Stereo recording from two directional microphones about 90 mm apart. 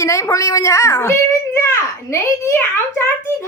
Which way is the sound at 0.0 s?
35° left (ahead or behind).